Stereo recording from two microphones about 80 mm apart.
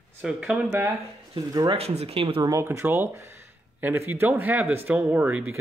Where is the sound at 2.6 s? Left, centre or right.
Right.